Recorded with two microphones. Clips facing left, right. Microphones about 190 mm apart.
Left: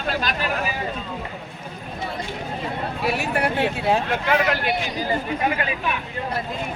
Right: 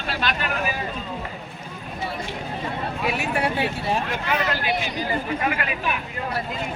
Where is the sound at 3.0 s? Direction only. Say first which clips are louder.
Left 2 dB; 40° left (ahead or behind).